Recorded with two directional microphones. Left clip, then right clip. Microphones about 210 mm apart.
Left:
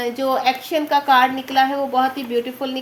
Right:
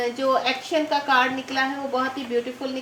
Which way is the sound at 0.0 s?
55° left (ahead or behind).